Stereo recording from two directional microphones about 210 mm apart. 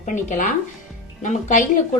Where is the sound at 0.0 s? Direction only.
35° left (ahead or behind).